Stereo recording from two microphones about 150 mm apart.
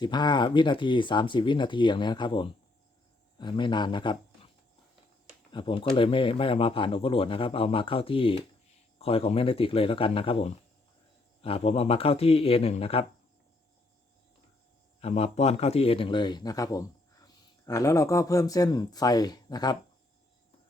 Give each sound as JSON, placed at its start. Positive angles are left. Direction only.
{"t": 0.0, "sound": "speech", "side_deg": 30}
{"t": 5.5, "sound": "speech", "side_deg": 35}
{"t": 15.0, "sound": "a man's voice", "side_deg": 45}